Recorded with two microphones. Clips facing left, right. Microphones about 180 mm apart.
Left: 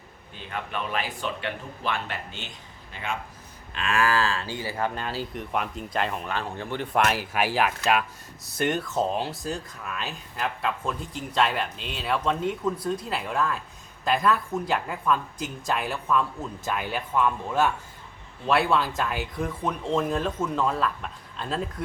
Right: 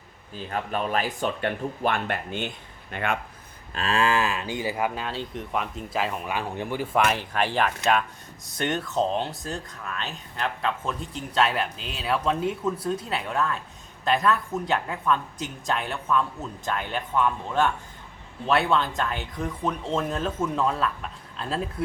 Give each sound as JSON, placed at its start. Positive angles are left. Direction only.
{"t": 0.3, "sound": "speech", "side_deg": -40}
{"t": 3.8, "sound": "speech", "side_deg": -30}
{"t": 4.9, "sound": "speech", "side_deg": 0}
{"t": 6.9, "sound": "speech", "side_deg": 0}